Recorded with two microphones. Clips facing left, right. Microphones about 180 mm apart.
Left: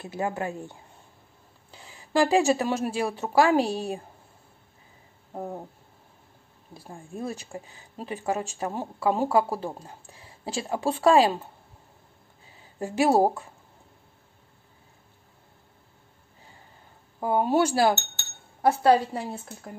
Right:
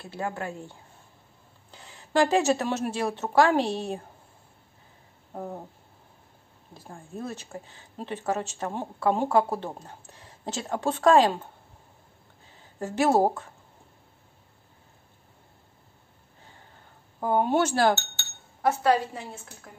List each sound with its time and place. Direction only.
0.0 s speech: 20° left (ahead or behind)
1.7 s speech: 5° left (ahead or behind)
5.3 s a sound: 5° left (ahead or behind)
6.7 s speech: 10° left (ahead or behind)
12.7 s speech: 15° left (ahead or behind)
17.2 s speech: 5° left (ahead or behind)
18.6 s speech: 30° left (ahead or behind)